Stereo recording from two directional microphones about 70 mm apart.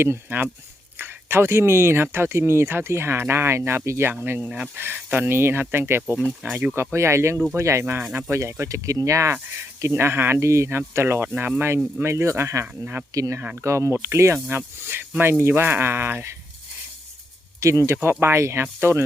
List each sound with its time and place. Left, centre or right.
0.0 s speech: right
4.4 s speech: centre
4.9 s speech: right
6.0 s speech: centre
6.7 s speech: right
9.8 s speech: right
13.1 s speech: right
17.6 s speech: right